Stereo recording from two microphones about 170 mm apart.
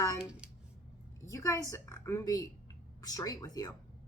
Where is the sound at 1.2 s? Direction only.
20° left (ahead or behind).